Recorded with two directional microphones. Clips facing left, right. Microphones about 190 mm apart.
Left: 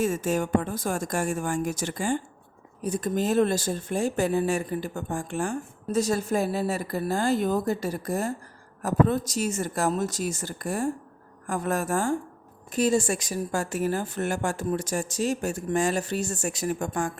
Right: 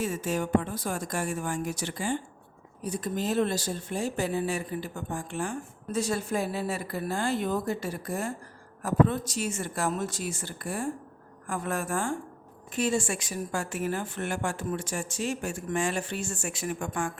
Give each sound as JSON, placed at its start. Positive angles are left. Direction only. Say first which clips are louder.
{"t": 0.0, "sound": "speech", "louder": "left 4 dB", "side_deg": 45}